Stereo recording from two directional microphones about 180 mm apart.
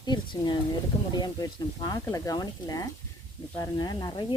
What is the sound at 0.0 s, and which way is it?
Speech, 25° left (ahead or behind).